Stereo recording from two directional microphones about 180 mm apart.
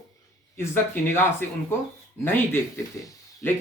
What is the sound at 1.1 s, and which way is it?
Speech, 15° left (ahead or behind).